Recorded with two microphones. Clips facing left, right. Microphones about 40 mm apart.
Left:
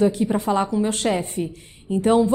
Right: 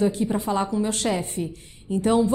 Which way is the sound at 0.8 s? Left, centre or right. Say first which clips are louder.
Left 3 dB; left.